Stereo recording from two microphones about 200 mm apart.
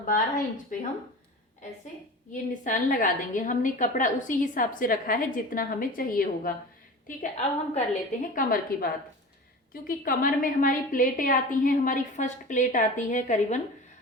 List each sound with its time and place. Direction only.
0.0 s a woman's voice: 40° left (ahead or behind)
2.3 s a woman's voice: 40° left (ahead or behind)